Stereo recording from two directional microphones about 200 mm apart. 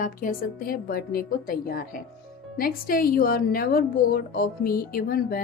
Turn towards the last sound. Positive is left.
turn(degrees=45)  # may be behind; listen again after turning